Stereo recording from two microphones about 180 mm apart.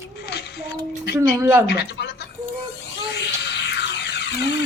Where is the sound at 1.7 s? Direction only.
65° left (ahead or behind).